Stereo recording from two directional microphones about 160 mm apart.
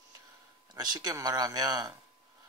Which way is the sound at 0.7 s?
25° right (ahead or behind).